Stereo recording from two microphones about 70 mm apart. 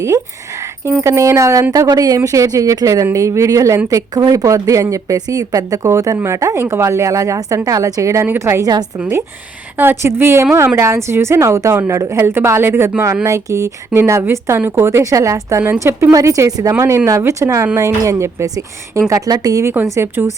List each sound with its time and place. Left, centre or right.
1.0 s a woman's voice: right
1.7 s a woman's voice: right
3.8 s a woman's voice: right
8.6 s a woman's voice: right
9.7 s a woman's voice: right
13.2 s a woman's voice: right
16.7 s a woman's voice: right
19.7 s a woman's voice: right